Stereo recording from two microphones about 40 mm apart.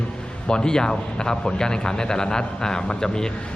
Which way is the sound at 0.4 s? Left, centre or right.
Centre.